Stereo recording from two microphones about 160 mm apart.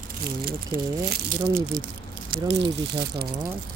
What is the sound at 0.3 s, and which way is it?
Speech, 70° right (ahead or behind).